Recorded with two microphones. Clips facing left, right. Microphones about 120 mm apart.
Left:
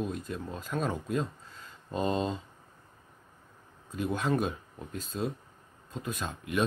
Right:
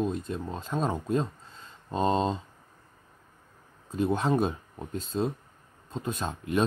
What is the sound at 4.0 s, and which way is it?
Speech, 30° right (ahead or behind).